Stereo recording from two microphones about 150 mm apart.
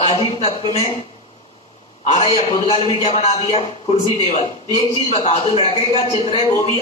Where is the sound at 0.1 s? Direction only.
40° left (ahead or behind).